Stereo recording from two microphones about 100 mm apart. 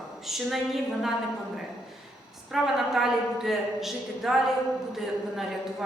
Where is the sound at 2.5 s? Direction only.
5° right (ahead or behind).